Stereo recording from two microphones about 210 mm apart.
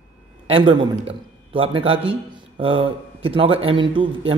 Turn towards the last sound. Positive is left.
turn(degrees=-25)  # may be behind; listen again after turning